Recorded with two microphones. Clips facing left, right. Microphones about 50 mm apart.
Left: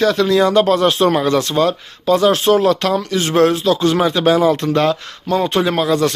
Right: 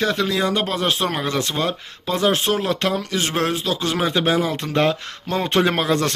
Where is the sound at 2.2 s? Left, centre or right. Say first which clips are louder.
Left 5 dB; right.